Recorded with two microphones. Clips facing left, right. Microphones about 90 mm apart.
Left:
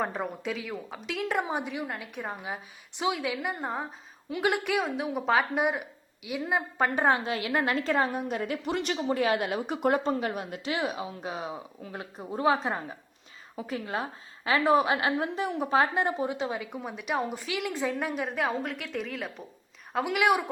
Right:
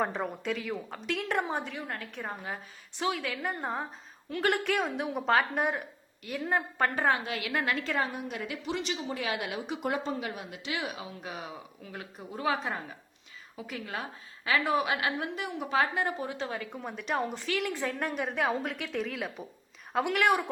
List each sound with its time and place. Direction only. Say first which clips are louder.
0.0 s a woman's voice: even; centre (ahead or behind)
1.5 s a woman's voice: left 3 dB; 15° left (ahead or behind)
4.3 s a woman's voice: left 1 dB; 10° left (ahead or behind)